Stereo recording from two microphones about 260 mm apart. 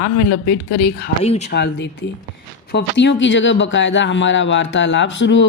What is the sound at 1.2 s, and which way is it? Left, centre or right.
Speech, left.